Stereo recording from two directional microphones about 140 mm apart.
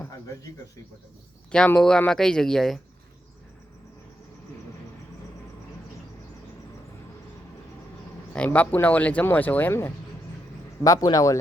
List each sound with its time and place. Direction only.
1.5 s speech: 5° left (ahead or behind)
8.4 s speech: 15° left (ahead or behind)
10.8 s speech: 25° left (ahead or behind)